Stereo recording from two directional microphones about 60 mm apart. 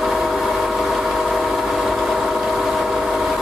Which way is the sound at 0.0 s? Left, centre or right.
Centre.